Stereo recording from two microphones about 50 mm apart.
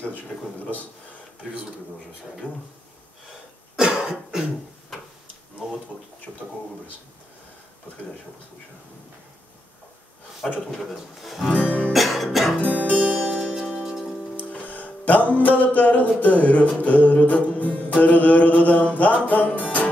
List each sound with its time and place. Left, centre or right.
0.3 s music: left
2.4 s music: left
3.7 s cough: centre
10.7 s speech: centre
11.5 s music: left
11.9 s music: centre
12.5 s music: left
12.8 s music: right
13.6 s music: centre
14.3 s music: left